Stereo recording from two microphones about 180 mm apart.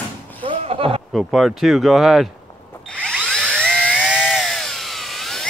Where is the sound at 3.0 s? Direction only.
Centre (ahead or behind).